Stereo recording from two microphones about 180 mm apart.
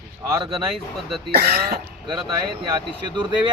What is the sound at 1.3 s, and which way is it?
Speech, 60° right (ahead or behind).